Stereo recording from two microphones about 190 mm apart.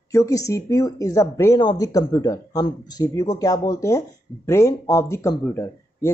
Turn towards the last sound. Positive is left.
turn(degrees=10)  # may be behind; listen again after turning